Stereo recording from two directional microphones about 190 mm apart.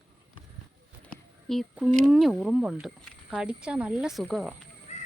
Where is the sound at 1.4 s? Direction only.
Centre (ahead or behind).